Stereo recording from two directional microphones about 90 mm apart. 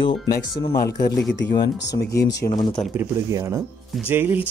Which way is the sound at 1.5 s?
45° left (ahead or behind).